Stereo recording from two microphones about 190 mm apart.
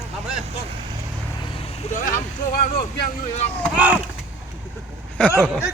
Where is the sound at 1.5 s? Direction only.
40° left (ahead or behind).